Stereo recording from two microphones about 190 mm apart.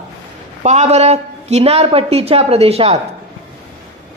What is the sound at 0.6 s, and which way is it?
A woman's voice, 35° right (ahead or behind).